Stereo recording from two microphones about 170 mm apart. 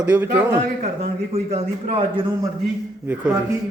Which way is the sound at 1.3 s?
35° right (ahead or behind).